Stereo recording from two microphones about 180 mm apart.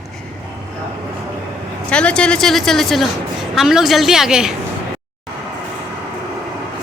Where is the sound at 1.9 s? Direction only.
5° left (ahead or behind).